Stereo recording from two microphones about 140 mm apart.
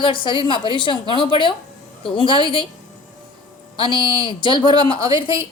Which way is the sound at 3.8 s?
35° left (ahead or behind).